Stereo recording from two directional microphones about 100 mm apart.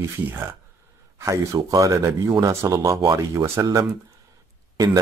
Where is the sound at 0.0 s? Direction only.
25° right (ahead or behind).